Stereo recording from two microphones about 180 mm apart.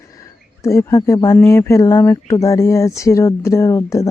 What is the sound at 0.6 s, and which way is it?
Speech, 15° left (ahead or behind).